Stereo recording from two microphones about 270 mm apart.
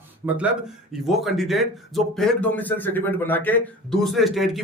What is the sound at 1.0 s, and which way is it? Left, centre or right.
Speech, centre.